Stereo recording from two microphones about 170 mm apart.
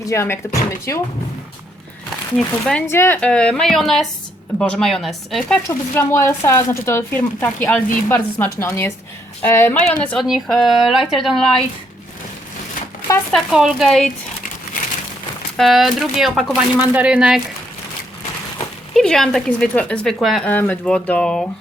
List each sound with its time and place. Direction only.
0.0 s speech: 15° left (ahead or behind)
2.3 s speech: 5° left (ahead or behind)
2.8 s speech: 15° left (ahead or behind)
5.6 s speech: 15° left (ahead or behind)
13.3 s speech: 5° right (ahead or behind)
15.5 s speech: centre (ahead or behind)
18.9 s speech: centre (ahead or behind)